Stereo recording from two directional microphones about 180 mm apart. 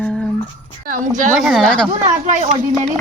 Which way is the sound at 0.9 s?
45° right (ahead or behind).